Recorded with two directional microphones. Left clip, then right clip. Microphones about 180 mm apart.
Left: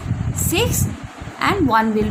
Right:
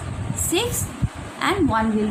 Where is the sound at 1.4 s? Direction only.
40° left (ahead or behind).